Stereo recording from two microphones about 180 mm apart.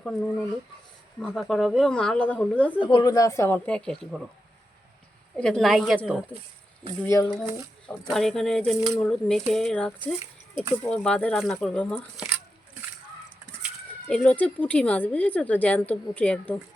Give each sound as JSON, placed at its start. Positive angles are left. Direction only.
{"t": 0.0, "sound": "speech", "side_deg": 0}
{"t": 2.8, "sound": "a woman's voice", "side_deg": 25}
{"t": 5.4, "sound": "a woman's voice", "side_deg": 5}
{"t": 7.9, "sound": "speech", "side_deg": 0}
{"t": 14.1, "sound": "a woman's voice", "side_deg": 5}